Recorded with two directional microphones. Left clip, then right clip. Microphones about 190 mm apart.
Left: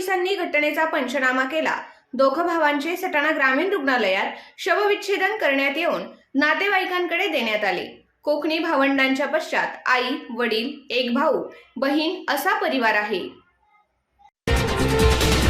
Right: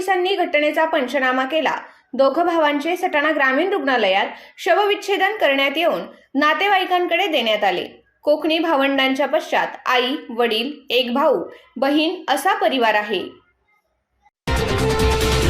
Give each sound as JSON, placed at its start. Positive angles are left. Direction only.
{"t": 0.0, "sound": "a woman's voice", "side_deg": -15}
{"t": 14.4, "sound": "music", "side_deg": 0}